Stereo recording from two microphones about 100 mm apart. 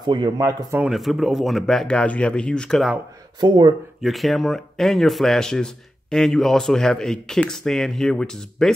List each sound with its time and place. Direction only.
0.0 s a man's voice: 50° right (ahead or behind)
0.4 s a man's voice: 35° right (ahead or behind)
0.9 s speech: centre (ahead or behind)
3.3 s speech: 45° right (ahead or behind)
4.0 s speech: centre (ahead or behind)